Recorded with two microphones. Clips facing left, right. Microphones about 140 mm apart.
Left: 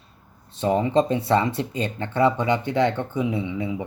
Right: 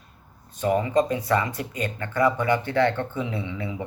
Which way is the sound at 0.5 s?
25° left (ahead or behind).